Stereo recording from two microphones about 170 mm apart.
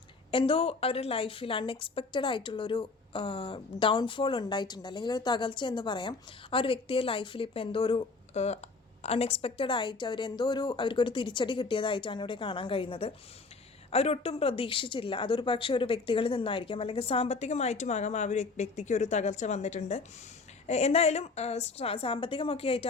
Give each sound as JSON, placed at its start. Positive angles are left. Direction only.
{"t": 0.3, "sound": "a woman's voice", "side_deg": 30}